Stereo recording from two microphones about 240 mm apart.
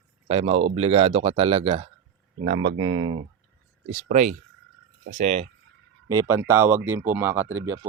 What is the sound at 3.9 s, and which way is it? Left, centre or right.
Speech, right.